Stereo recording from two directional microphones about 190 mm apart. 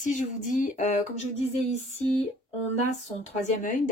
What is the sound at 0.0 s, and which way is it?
Speech, 40° left (ahead or behind).